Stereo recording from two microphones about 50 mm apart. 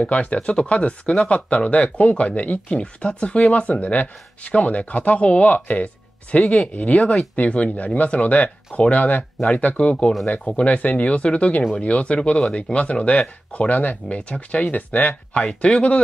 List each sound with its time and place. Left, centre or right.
0.1 s speech: left
15.6 s speech: left